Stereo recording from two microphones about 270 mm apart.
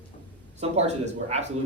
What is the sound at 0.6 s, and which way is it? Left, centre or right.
Speech, right.